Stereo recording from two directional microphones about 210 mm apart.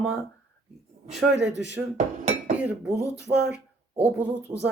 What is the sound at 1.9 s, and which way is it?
Dishes, 35° right (ahead or behind).